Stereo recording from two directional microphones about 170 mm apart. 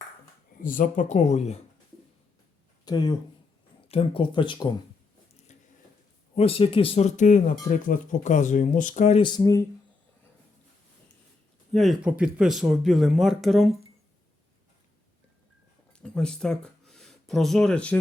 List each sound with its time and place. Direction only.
0.6 s speech: 50° left (ahead or behind)
2.8 s speech: 25° left (ahead or behind)
5.5 s a sound: 45° left (ahead or behind)
6.3 s speech: 35° left (ahead or behind)
9.2 s speech: 25° left (ahead or behind)
11.7 s speech: centre (ahead or behind)
15.9 s a sound: 5° left (ahead or behind)